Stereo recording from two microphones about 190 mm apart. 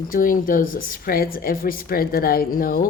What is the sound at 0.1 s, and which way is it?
A woman's voice, 45° left (ahead or behind).